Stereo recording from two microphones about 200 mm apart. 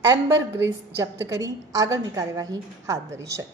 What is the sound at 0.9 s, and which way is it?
A woman's voice, 15° right (ahead or behind).